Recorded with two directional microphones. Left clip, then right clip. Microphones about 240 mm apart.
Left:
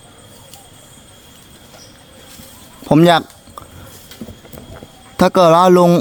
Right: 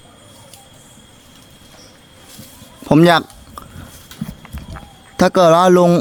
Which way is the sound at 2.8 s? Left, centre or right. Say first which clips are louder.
Even; centre.